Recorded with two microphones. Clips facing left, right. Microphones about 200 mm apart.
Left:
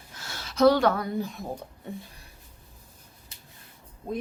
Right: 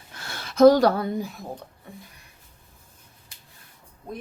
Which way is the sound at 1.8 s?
20° left (ahead or behind).